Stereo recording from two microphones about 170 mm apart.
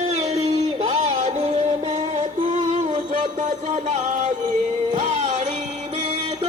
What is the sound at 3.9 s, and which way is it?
Music, 45° right (ahead or behind).